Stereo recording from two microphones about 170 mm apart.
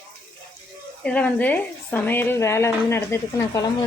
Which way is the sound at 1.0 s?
10° left (ahead or behind).